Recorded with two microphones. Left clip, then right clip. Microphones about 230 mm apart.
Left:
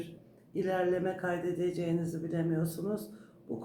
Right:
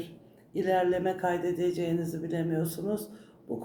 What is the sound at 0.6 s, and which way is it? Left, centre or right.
Speech, centre.